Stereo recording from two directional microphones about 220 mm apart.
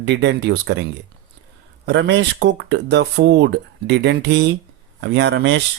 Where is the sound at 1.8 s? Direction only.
55° right (ahead or behind).